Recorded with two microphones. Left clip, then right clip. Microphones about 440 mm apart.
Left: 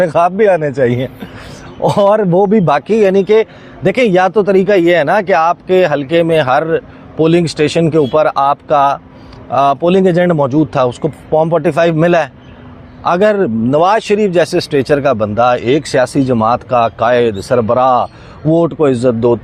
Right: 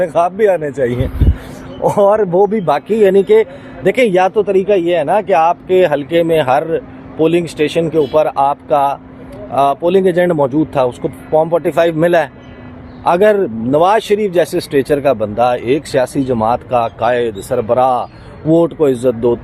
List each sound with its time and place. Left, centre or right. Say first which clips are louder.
0.0 s speech: left 2 dB; left